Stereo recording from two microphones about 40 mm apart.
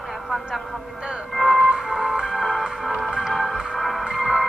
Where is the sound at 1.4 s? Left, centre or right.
Centre.